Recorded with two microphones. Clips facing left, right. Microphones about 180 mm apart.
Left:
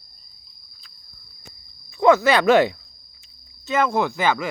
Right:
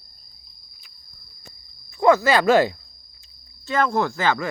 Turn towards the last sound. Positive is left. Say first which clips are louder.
# left 1 dB
turn(degrees=15)  # may be behind; listen again after turning